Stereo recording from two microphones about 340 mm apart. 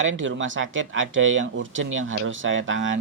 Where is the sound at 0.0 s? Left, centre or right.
Right.